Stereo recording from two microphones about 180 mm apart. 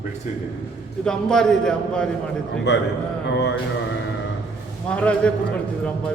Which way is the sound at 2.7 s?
75° left (ahead or behind).